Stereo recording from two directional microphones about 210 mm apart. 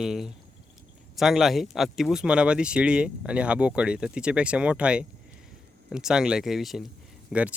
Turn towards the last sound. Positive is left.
turn(degrees=-5)  # may be behind; listen again after turning